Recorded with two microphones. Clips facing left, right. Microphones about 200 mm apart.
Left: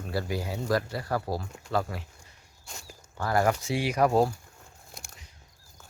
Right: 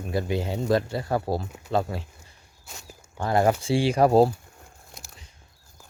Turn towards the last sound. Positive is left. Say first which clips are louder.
# right 1 dB
turn(degrees=0)  # may be behind; listen again after turning